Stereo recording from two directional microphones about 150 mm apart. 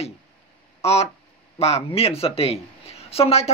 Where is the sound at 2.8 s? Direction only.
45° left (ahead or behind).